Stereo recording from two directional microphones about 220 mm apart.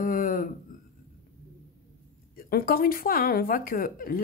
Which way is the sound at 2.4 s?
40° left (ahead or behind).